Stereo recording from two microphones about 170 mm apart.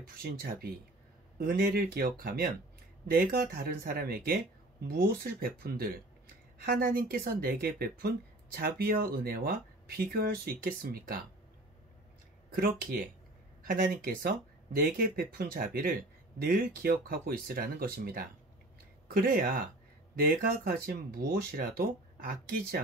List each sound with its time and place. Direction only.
0.2 s speech: 60° right (ahead or behind)
12.5 s speech: 55° right (ahead or behind)